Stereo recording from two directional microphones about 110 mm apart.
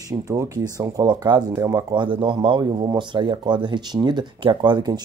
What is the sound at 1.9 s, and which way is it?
Speech, 45° right (ahead or behind).